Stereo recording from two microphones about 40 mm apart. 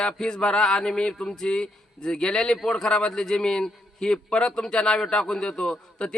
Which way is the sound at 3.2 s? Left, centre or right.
Centre.